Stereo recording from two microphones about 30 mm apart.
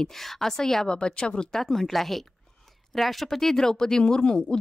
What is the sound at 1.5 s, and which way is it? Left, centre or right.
Speech, centre.